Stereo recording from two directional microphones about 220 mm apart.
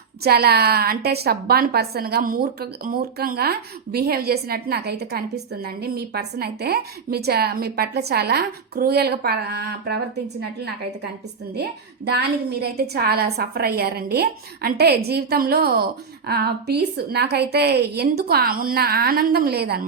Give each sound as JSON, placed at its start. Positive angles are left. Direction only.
{"t": 0.2, "sound": "a woman's voice", "side_deg": -45}